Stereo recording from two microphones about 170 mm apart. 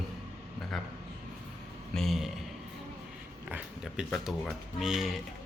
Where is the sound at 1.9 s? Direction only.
Centre (ahead or behind).